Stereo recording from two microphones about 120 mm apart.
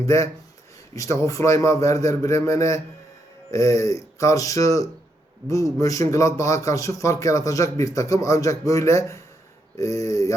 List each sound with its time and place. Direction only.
0.1 s a man's voice: 25° left (ahead or behind)